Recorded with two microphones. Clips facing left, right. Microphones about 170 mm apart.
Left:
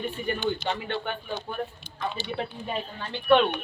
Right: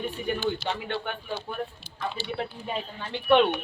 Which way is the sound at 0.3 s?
5° right (ahead or behind).